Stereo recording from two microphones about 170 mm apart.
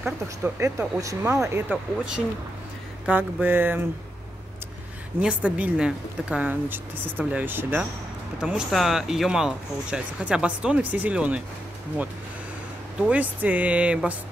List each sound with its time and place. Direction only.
0.0 s speech: 15° right (ahead or behind)
5.2 s speech: 5° right (ahead or behind)
13.1 s speech: 10° right (ahead or behind)